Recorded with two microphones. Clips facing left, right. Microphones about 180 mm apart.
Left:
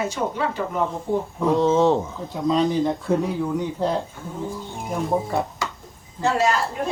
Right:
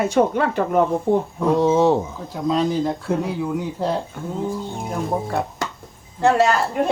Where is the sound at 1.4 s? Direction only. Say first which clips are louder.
Right 1 dB; 10° right (ahead or behind).